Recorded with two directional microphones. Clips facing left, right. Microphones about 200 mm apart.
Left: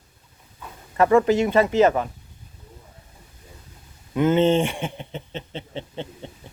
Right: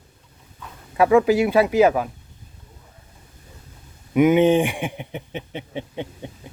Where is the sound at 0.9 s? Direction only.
5° right (ahead or behind).